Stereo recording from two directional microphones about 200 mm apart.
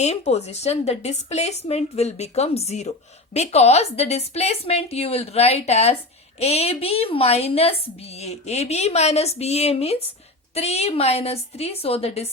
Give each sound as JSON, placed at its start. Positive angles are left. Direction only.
{"t": 0.0, "sound": "a woman's voice", "side_deg": 35}